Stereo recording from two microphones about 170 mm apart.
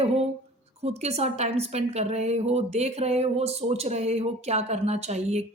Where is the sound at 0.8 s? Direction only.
40° right (ahead or behind).